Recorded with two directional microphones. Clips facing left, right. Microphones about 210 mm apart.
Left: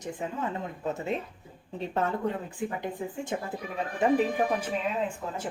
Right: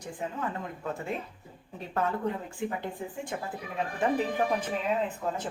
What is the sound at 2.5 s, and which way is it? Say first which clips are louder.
Speech: left 1 dB; 20° left (ahead or behind).